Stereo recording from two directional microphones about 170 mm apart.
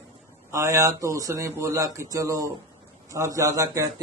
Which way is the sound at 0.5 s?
20° right (ahead or behind).